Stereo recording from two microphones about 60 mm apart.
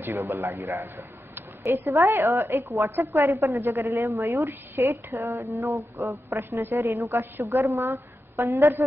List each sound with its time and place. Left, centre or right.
0.0 s a woman's voice: right
0.7 s a man's voice: right
1.6 s a woman's voice: right
3.6 s a woman's voice: right
5.3 s a woman's voice: right
7.6 s a woman's voice: right